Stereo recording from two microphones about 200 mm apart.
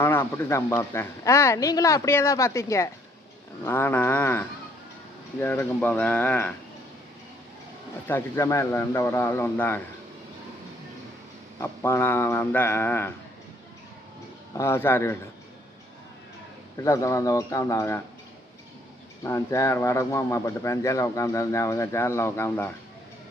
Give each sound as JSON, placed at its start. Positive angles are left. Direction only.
{"t": 0.0, "sound": "speech", "side_deg": 10}
{"t": 8.0, "sound": "speech", "side_deg": 10}
{"t": 11.6, "sound": "speech", "side_deg": 15}
{"t": 14.5, "sound": "speech", "side_deg": 15}
{"t": 16.7, "sound": "speech", "side_deg": 15}
{"t": 19.2, "sound": "speech", "side_deg": 15}